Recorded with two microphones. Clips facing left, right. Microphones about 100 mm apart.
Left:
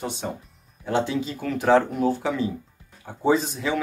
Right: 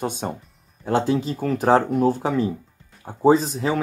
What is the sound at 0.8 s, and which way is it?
Speech, 40° right (ahead or behind).